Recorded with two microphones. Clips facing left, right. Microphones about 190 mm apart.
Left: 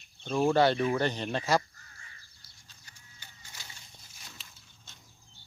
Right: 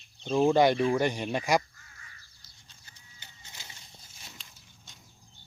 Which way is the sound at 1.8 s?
40° left (ahead or behind).